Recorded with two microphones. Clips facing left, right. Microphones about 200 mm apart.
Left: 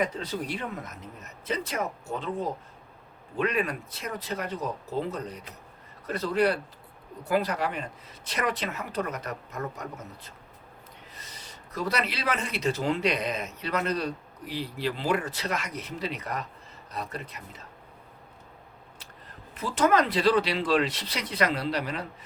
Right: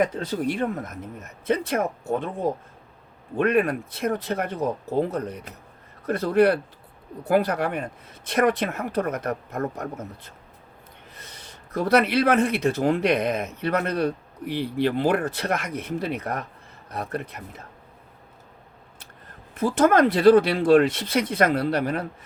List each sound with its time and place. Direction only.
0.0 s speech: 50° right (ahead or behind)
3.3 s speech: 55° right (ahead or behind)
11.2 s speech: 55° right (ahead or behind)
19.5 s speech: 55° right (ahead or behind)